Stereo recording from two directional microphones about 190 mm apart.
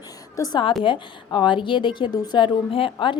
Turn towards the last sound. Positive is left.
turn(degrees=25)  # may be behind; listen again after turning